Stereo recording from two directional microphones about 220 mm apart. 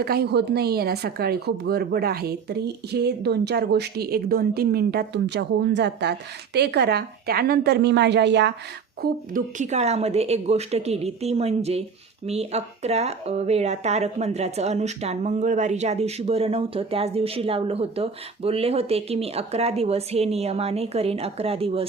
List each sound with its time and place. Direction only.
0.0 s speech: 45° right (ahead or behind)
9.0 s speech: 35° right (ahead or behind)